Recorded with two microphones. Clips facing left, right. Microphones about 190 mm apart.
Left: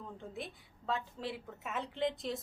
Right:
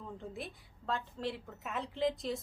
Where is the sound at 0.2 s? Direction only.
Centre (ahead or behind).